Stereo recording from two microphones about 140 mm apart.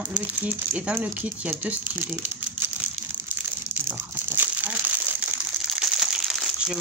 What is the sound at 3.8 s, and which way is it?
Crumpling, 15° right (ahead or behind).